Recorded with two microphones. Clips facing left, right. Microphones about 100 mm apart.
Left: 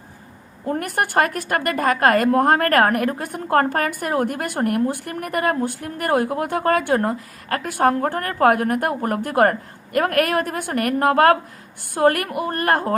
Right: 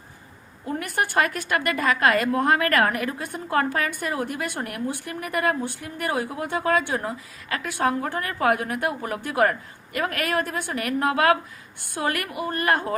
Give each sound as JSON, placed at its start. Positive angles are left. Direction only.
{"t": 0.6, "sound": "a woman's voice", "side_deg": 50}